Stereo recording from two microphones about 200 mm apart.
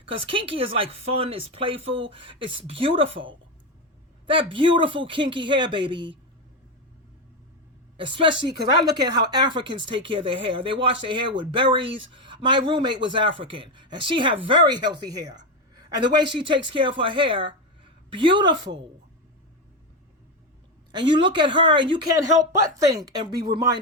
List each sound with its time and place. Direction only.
0.2 s speech: 25° right (ahead or behind)
4.5 s speech: 25° right (ahead or behind)
7.9 s speech: 25° right (ahead or behind)
20.9 s speech: 25° right (ahead or behind)